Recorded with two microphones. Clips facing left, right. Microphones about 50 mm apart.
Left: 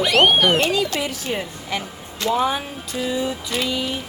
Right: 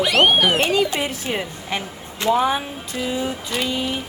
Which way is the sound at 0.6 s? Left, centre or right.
Centre.